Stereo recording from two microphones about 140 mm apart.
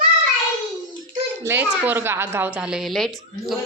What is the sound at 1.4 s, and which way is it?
A woman's voice, 15° right (ahead or behind).